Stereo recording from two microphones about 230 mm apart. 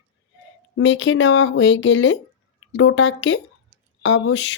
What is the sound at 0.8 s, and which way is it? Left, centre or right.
Speech, left.